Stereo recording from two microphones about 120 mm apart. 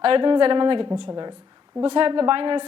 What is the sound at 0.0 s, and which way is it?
A woman's voice, 45° right (ahead or behind).